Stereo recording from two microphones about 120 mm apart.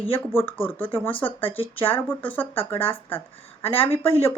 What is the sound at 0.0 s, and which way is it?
Speech, 15° left (ahead or behind).